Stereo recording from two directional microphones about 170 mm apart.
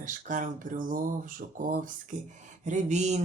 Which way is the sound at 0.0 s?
50° right (ahead or behind).